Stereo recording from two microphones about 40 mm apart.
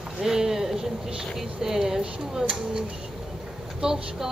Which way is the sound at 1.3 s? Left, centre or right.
Centre.